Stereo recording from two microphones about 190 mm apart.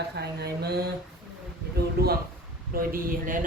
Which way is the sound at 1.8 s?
55° right (ahead or behind).